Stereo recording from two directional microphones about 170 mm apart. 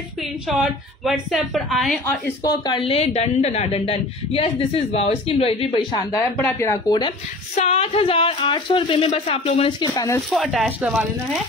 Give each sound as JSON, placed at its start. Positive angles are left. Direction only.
{"t": 0.5, "sound": "a woman's voice", "side_deg": -5}
{"t": 2.0, "sound": "speech", "side_deg": 20}
{"t": 7.5, "sound": "speech", "side_deg": 40}
{"t": 9.7, "sound": "speech", "side_deg": 25}
{"t": 10.3, "sound": "a woman's voice", "side_deg": 0}